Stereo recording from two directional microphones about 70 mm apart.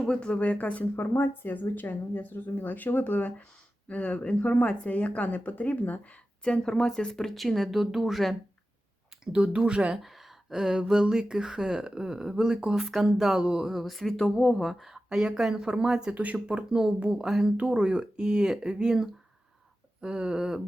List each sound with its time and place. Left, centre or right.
0.1 s speech: centre
6.4 s speech: centre
9.2 s speech: centre
10.0 s speech: centre
16.1 s speech: right